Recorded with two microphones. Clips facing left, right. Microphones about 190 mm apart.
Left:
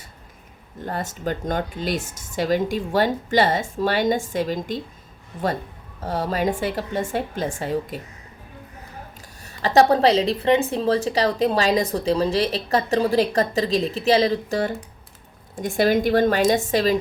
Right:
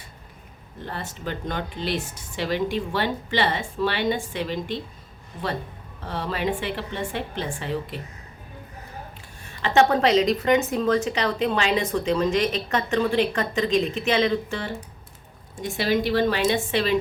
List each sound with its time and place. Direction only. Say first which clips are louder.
0.9 s speech: left 5 dB; 45° left (ahead or behind)
6.0 s a woman's voice: left 4 dB; 40° left (ahead or behind)
9.4 s a woman's voice: left 3 dB; 40° left (ahead or behind)
15.6 s speech: left 4 dB; 50° left (ahead or behind)